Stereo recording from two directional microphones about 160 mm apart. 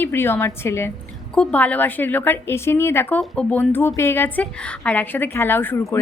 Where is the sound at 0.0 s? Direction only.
15° left (ahead or behind).